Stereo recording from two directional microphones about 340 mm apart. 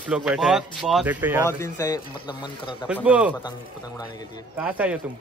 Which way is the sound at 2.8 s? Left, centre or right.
Centre.